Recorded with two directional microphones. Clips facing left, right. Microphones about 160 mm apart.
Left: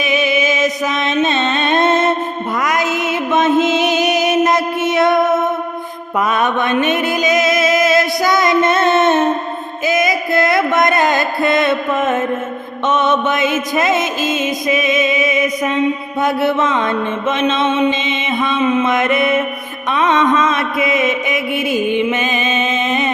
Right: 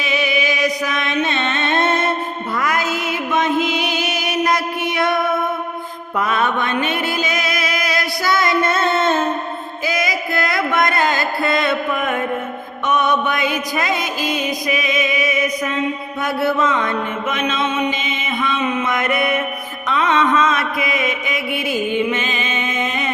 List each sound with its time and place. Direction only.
0.0 s mantra: 20° left (ahead or behind)
2.6 s music: 20° left (ahead or behind)
6.1 s mantra: 20° left (ahead or behind)
9.8 s music: 20° left (ahead or behind)
12.9 s mantra: 25° left (ahead or behind)